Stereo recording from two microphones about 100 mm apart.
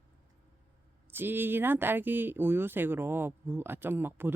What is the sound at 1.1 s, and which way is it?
Speech, 20° right (ahead or behind).